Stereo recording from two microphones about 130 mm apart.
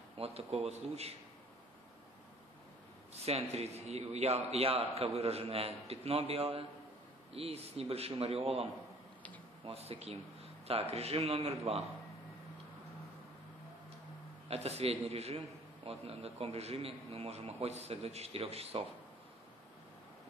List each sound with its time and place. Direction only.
0.2 s a man's voice: 55° right (ahead or behind)
3.3 s a man's voice: 55° right (ahead or behind)
9.7 s a man's voice: 50° right (ahead or behind)
14.5 s a man's voice: 55° right (ahead or behind)